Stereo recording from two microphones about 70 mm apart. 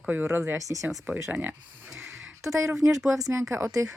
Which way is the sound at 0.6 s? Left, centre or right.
Right.